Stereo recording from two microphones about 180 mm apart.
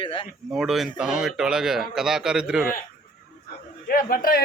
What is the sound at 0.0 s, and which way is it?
Speech, 30° left (ahead or behind).